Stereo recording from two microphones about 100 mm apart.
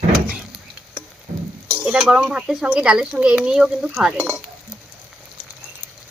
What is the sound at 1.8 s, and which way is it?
Speech, 10° right (ahead or behind).